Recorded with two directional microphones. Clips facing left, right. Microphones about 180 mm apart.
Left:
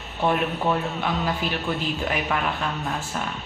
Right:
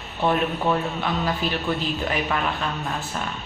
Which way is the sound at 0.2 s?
10° left (ahead or behind).